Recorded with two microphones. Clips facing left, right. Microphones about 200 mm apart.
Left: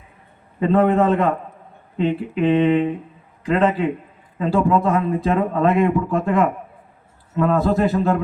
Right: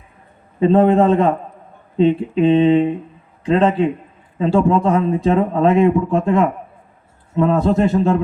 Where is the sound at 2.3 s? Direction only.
25° right (ahead or behind).